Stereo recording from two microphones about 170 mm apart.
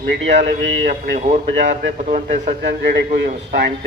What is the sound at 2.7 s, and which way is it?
Speech, 75° right (ahead or behind).